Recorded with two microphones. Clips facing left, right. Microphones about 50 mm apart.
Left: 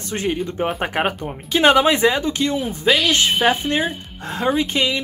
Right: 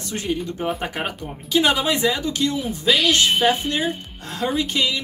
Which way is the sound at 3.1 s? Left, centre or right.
Left.